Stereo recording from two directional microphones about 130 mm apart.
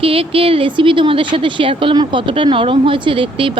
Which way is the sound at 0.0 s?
45° right (ahead or behind).